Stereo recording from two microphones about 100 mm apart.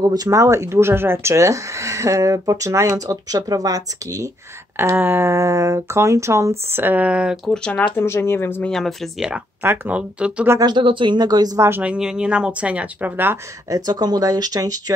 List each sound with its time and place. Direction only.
0.0 s speech: 40° right (ahead or behind)
4.7 s speech: 20° right (ahead or behind)
6.7 s speech: 20° right (ahead or behind)
7.5 s speech: 10° left (ahead or behind)
7.9 s a woman's voice: 25° left (ahead or behind)
8.6 s speech: 5° left (ahead or behind)
9.6 s speech: 25° right (ahead or behind)
9.9 s speech: 10° right (ahead or behind)
10.6 s speech: 50° right (ahead or behind)
11.8 s speech: 10° right (ahead or behind)
13.7 s speech: 40° right (ahead or behind)